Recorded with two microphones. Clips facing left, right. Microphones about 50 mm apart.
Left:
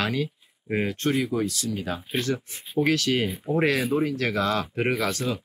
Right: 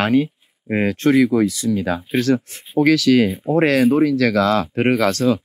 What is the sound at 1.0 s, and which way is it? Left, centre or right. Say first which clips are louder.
Speech: right 14 dB; right.